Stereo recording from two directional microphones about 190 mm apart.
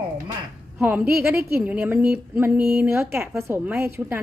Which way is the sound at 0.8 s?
10° right (ahead or behind).